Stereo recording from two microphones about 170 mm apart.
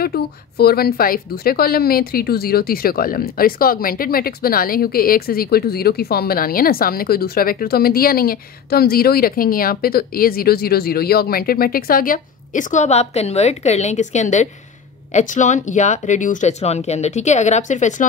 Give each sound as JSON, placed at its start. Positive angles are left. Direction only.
{"t": 0.0, "sound": "a woman's voice", "side_deg": 65}